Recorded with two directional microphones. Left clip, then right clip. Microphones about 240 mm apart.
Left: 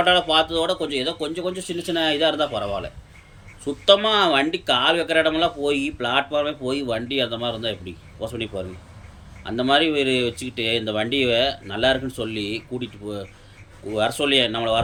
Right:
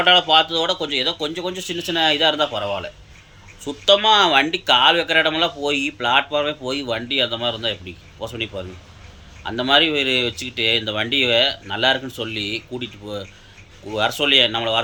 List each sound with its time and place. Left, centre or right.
0.0 s speech: centre